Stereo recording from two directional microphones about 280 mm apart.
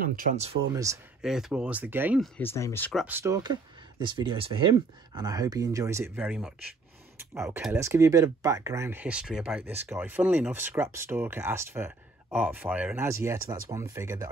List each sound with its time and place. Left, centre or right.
0.0 s speech: right
0.7 s speech: centre
2.3 s speech: centre